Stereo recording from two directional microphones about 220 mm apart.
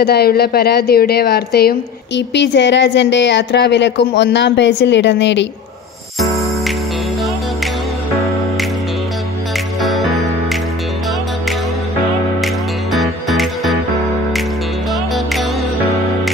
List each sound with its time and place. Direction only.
0.0 s a woman's voice: 45° left (ahead or behind)
9.8 s music: centre (ahead or behind)
12.9 s music: centre (ahead or behind)